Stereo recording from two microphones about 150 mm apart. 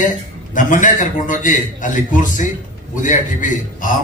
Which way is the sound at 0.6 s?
60° left (ahead or behind).